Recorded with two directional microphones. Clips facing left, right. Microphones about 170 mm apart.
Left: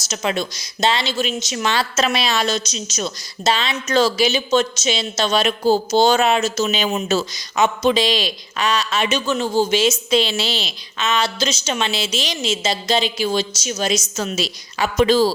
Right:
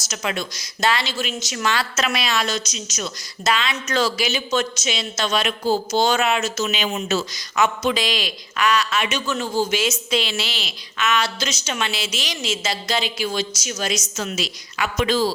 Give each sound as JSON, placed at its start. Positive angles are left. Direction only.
{"t": 0.1, "sound": "a woman's voice", "side_deg": 25}